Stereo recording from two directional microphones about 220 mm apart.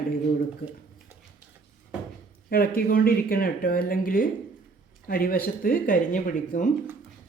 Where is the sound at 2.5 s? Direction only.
40° left (ahead or behind).